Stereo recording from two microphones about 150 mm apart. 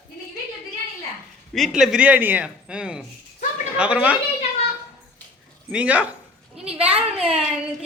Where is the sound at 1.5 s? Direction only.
Centre (ahead or behind).